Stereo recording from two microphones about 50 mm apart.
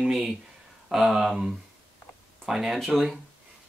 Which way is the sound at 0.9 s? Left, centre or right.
Centre.